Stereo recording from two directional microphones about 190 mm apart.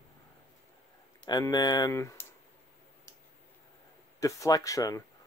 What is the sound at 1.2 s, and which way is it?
Speech, 20° left (ahead or behind).